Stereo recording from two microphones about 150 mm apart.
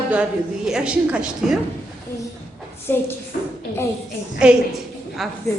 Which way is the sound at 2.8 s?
15° left (ahead or behind).